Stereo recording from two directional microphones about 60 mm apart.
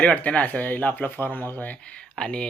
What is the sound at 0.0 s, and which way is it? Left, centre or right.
Speech, left.